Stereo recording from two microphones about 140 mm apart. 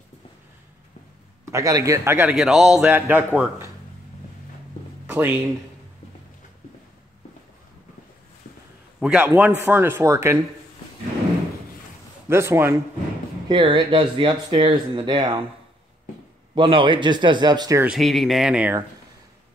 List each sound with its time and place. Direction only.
1.4 s a man's voice: 25° right (ahead or behind)
5.0 s speech: 15° right (ahead or behind)
9.0 s a man's voice: 10° right (ahead or behind)
12.3 s a man's voice: 20° right (ahead or behind)
13.5 s speech: 35° right (ahead or behind)
16.5 s speech: 35° right (ahead or behind)
17.8 s speech: centre (ahead or behind)